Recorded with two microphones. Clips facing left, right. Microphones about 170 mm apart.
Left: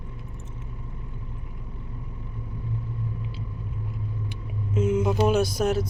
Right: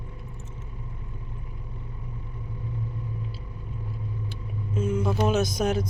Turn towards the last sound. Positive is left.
turn(degrees=5)  # may be behind; listen again after turning